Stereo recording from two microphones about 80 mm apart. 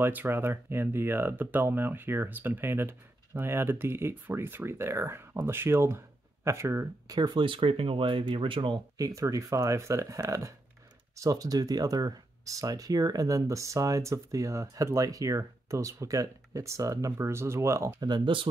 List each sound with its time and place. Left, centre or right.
0.0 s speech: right
7.1 s speech: right
8.9 s speech: right
18.0 s speech: right